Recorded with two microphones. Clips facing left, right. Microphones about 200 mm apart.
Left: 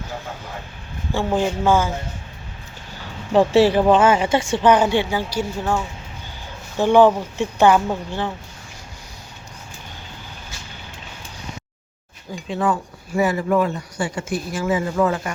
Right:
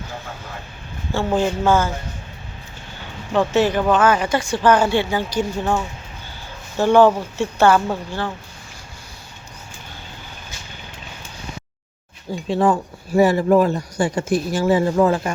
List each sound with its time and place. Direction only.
1.1 s a woman's voice: 15° left (ahead or behind)
3.3 s speech: 30° left (ahead or behind); by 5.7 s 10° left (ahead or behind)
6.7 s a woman's voice: 15° left (ahead or behind)
12.5 s speech: 30° right (ahead or behind)